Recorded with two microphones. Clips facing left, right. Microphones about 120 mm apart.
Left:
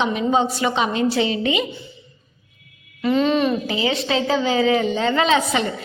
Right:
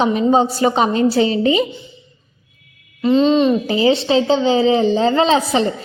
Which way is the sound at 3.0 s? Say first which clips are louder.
Right 5 dB; 25° right (ahead or behind).